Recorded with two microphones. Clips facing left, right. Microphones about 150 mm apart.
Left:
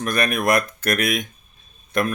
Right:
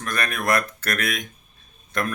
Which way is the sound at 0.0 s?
15° left (ahead or behind).